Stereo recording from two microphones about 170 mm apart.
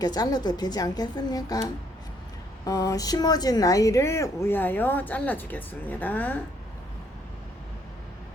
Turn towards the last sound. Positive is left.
turn(degrees=10)  # may be behind; listen again after turning